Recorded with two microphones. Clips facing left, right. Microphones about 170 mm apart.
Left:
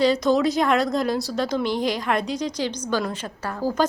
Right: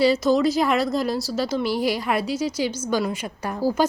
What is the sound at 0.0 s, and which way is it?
A woman's voice, 5° right (ahead or behind).